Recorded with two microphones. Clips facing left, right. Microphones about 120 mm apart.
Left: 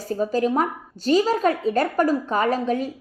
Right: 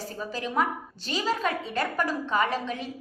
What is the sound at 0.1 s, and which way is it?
A woman's voice, 45° left (ahead or behind).